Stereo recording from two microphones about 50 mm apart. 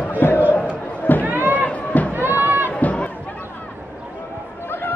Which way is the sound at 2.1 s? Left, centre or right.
Right.